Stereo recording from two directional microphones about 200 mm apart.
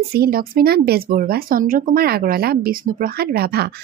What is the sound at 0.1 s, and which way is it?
Speech, 50° right (ahead or behind).